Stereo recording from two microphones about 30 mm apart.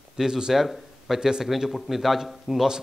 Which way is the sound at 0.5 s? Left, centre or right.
Centre.